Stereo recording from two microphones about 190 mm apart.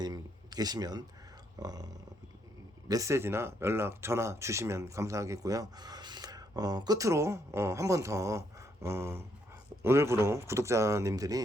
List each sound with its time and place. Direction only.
0.0 s speech: 20° right (ahead or behind)
1.5 s a sound: 20° right (ahead or behind)
2.9 s speech: 15° right (ahead or behind)